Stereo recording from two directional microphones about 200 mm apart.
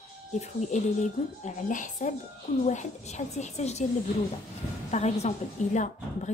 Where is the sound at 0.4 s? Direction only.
35° left (ahead or behind).